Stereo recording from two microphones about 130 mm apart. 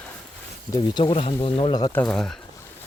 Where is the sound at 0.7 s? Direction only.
40° left (ahead or behind).